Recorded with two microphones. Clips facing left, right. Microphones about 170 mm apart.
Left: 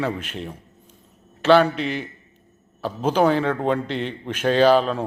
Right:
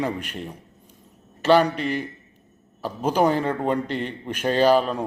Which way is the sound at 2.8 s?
10° right (ahead or behind).